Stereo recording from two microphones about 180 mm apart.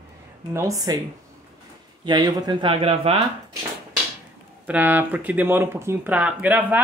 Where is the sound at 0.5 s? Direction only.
15° right (ahead or behind).